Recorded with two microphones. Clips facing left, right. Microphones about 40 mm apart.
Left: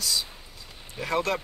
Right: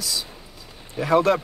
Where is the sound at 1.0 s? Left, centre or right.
Centre.